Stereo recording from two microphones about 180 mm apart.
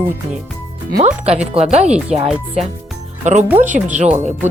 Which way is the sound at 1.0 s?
35° right (ahead or behind).